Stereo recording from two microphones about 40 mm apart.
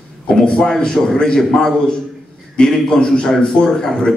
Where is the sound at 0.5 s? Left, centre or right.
Centre.